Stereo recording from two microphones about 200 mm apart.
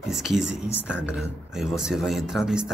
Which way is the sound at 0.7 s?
10° left (ahead or behind).